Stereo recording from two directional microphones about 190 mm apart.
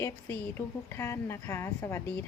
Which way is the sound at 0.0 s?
10° left (ahead or behind).